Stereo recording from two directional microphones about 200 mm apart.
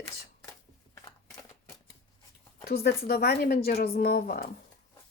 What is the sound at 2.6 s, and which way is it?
Speech, 50° left (ahead or behind).